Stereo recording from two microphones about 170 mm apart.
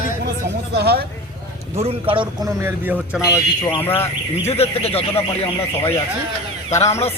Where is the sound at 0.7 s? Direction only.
70° right (ahead or behind).